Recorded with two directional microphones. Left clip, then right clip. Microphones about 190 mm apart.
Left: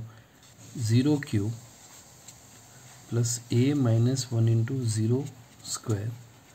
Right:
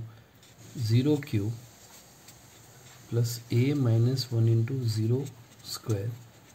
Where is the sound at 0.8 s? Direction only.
30° left (ahead or behind).